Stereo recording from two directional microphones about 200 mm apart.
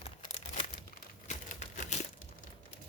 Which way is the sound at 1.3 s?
35° left (ahead or behind).